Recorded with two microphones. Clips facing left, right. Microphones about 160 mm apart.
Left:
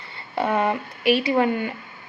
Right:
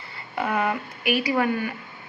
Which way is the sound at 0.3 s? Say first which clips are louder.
Left 3 dB; 30° left (ahead or behind).